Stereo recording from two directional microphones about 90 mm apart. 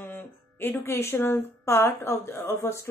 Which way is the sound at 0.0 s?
25° left (ahead or behind).